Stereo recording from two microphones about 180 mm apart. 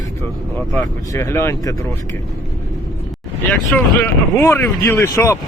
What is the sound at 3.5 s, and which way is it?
Speech, 10° left (ahead or behind).